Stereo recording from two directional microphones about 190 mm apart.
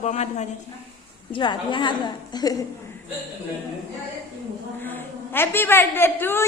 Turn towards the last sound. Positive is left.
turn(degrees=10)  # may be behind; listen again after turning